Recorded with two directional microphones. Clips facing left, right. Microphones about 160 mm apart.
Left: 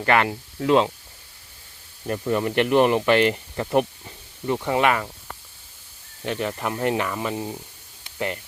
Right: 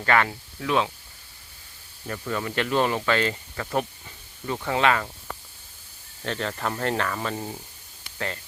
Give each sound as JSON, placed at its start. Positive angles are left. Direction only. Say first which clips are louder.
{"t": 0.0, "sound": "speech", "louder": "left 2 dB", "side_deg": 20}
{"t": 2.0, "sound": "speech", "louder": "left 6 dB", "side_deg": 20}
{"t": 6.2, "sound": "speech", "louder": "left 2 dB", "side_deg": 15}
{"t": 8.0, "sound": "spray", "louder": "left 4 dB", "side_deg": 20}